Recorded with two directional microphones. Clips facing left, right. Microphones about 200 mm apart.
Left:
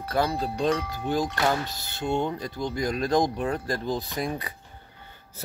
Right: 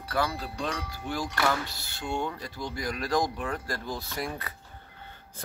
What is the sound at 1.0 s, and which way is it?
Speech, 20° left (ahead or behind).